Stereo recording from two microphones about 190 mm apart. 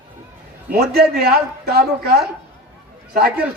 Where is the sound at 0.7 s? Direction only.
55° right (ahead or behind).